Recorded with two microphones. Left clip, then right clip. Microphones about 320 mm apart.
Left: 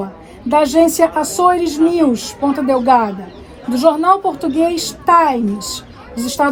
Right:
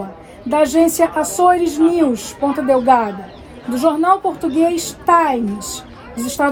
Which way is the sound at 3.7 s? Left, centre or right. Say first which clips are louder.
Left 2 dB; centre.